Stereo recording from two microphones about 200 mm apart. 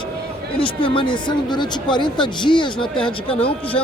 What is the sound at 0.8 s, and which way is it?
Speech, 25° left (ahead or behind).